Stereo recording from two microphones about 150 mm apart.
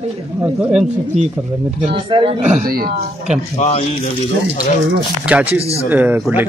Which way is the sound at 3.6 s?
50° left (ahead or behind).